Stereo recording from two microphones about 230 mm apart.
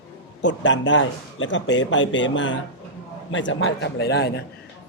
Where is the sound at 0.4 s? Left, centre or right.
Left.